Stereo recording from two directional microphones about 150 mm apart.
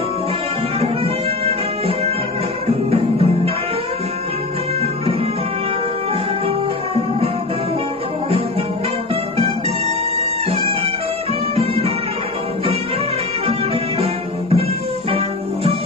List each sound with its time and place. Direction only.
0.7 s music: 40° right (ahead or behind)
10.1 s music: 40° right (ahead or behind)
13.5 s music: 40° right (ahead or behind)